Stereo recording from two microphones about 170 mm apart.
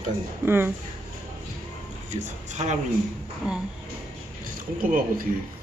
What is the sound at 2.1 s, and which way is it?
Speech, 45° right (ahead or behind).